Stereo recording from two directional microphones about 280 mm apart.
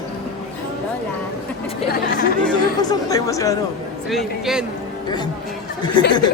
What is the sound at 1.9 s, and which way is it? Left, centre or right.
Speech, left.